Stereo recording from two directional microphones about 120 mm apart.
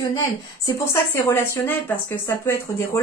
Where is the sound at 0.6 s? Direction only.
25° left (ahead or behind).